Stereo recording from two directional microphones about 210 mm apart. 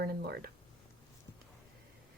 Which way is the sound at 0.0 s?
50° right (ahead or behind).